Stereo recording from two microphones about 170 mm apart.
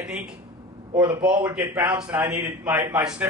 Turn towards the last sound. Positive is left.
turn(degrees=-10)  # may be behind; listen again after turning